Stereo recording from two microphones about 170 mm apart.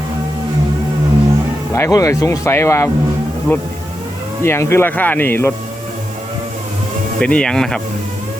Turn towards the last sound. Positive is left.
turn(degrees=5)  # may be behind; listen again after turning